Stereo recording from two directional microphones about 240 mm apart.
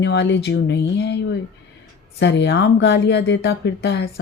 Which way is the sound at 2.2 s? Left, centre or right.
Left.